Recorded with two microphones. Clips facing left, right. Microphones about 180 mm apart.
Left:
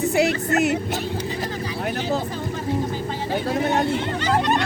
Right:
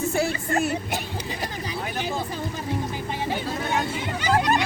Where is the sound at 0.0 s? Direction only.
20° left (ahead or behind).